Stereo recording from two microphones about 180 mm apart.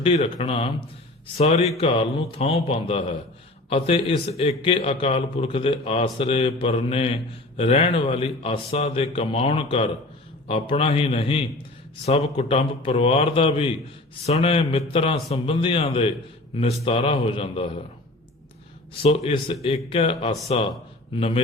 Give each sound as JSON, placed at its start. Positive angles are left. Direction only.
{"t": 0.0, "sound": "a man's voice", "side_deg": 35}
{"t": 19.0, "sound": "a man's voice", "side_deg": 30}